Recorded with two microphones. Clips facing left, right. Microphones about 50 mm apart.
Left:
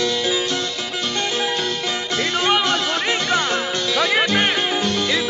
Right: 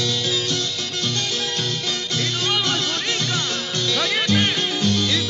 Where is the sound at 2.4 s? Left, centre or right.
Left.